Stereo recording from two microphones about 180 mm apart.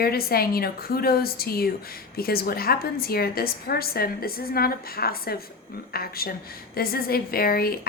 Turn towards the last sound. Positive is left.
turn(degrees=55)  # may be behind; listen again after turning